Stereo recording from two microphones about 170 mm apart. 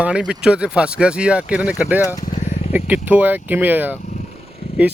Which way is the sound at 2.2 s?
50° left (ahead or behind).